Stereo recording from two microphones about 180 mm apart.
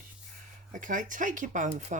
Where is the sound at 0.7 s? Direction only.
45° right (ahead or behind).